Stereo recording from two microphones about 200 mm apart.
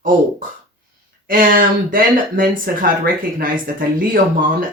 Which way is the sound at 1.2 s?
45° right (ahead or behind).